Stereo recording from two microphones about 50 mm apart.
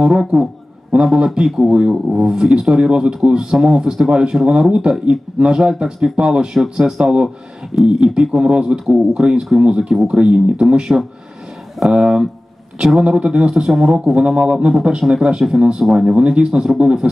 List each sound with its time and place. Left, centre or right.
0.0 s speech: centre
15.8 s speech: centre
16.1 s speech: right